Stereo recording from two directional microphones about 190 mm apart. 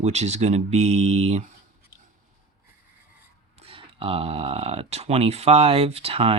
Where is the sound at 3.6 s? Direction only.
30° right (ahead or behind).